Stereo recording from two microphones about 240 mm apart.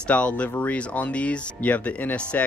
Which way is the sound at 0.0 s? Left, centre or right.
Centre.